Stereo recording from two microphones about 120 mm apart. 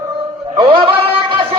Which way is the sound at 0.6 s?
50° right (ahead or behind).